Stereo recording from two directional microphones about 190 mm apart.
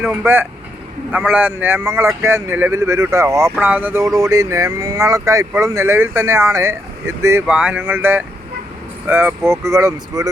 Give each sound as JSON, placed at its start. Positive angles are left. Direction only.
{"t": 0.0, "sound": "speech", "side_deg": -10}